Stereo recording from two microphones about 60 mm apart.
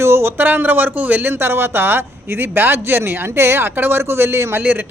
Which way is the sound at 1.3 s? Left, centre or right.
Right.